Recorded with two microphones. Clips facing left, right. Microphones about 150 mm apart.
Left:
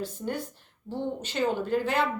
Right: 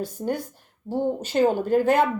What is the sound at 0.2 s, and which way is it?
A woman's voice, 40° right (ahead or behind).